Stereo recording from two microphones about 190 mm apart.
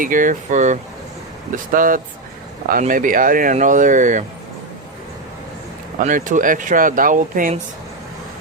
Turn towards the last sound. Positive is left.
turn(degrees=-45)  # may be behind; listen again after turning